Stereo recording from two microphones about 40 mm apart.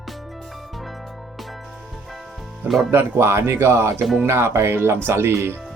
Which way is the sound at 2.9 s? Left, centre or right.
Right.